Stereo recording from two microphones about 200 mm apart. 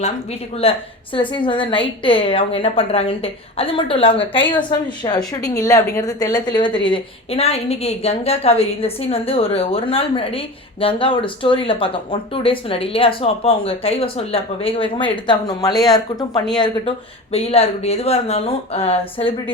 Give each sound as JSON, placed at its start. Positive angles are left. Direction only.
{"t": 0.5, "sound": "a woman's voice", "side_deg": 30}
{"t": 17.3, "sound": "speech", "side_deg": 30}